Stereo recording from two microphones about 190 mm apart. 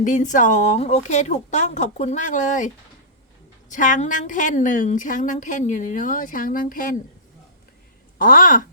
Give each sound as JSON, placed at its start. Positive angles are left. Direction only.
{"t": 0.0, "sound": "a woman's voice", "side_deg": 40}
{"t": 8.2, "sound": "a woman's voice", "side_deg": 45}